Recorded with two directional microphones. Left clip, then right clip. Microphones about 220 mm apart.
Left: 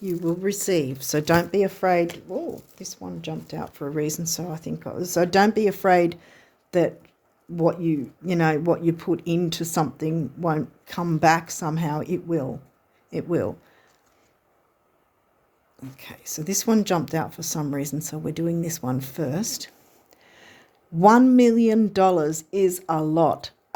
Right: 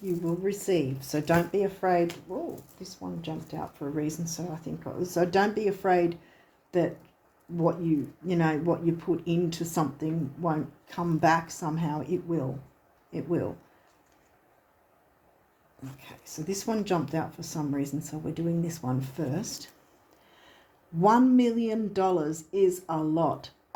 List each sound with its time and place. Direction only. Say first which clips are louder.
0.3 s speech: left 5 dB; 45° left (ahead or behind)
16.0 s speech: left 7 dB; 50° left (ahead or behind)